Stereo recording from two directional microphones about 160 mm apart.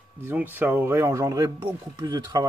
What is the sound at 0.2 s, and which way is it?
Speech, 10° right (ahead or behind).